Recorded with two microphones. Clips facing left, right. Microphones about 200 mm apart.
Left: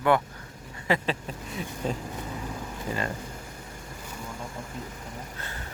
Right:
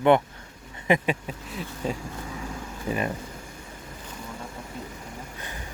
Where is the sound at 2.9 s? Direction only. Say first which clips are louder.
Right 4 dB; 20° right (ahead or behind).